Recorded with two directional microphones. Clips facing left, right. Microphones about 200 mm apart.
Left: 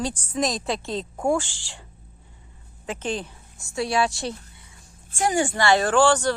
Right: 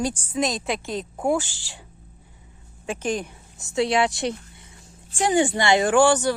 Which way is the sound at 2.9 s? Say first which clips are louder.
Right 2 dB; 10° right (ahead or behind).